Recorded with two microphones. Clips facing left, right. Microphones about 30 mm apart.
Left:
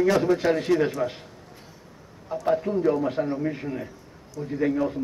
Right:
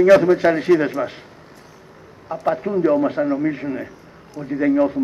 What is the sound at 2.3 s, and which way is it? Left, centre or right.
A man's voice, right.